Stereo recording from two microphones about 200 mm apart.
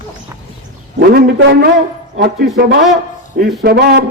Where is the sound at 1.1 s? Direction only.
50° right (ahead or behind).